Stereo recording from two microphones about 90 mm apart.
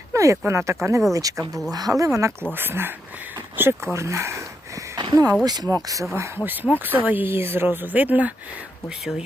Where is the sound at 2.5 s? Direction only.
25° right (ahead or behind).